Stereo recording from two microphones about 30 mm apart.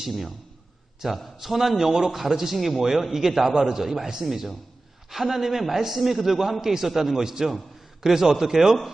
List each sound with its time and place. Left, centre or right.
1.0 s a man's voice: centre
1.8 s a man's voice: right
2.0 s a man's voice: centre